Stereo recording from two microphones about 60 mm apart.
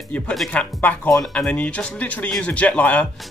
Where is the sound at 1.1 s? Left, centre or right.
Centre.